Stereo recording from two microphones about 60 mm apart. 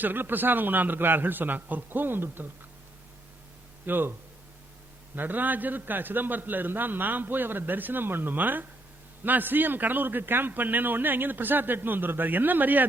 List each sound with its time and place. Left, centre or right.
0.0 s a man's voice: right
3.8 s a man's voice: right
5.1 s a man's voice: right